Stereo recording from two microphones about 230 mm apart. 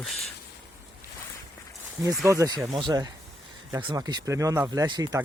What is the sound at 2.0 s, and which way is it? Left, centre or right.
Speech, centre.